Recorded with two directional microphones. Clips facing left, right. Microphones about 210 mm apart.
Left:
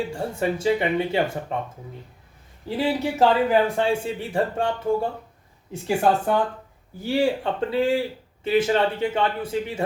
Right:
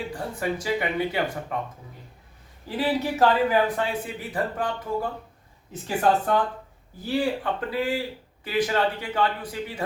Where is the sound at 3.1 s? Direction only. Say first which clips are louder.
Left 2 dB; 25° left (ahead or behind).